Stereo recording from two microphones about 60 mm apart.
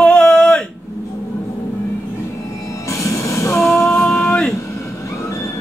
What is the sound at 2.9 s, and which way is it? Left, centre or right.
Train, left.